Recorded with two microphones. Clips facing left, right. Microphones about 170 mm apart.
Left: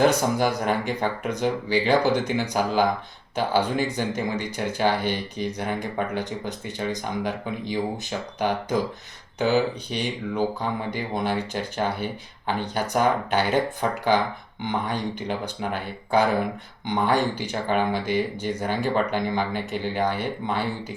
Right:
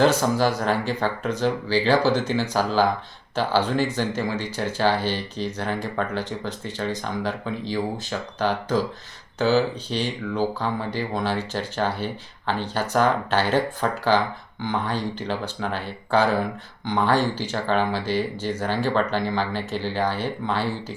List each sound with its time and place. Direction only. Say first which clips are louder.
0.0 s speech: right 1 dB; 15° left (ahead or behind)